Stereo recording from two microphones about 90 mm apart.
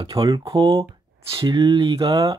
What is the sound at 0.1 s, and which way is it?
Speech, 40° right (ahead or behind).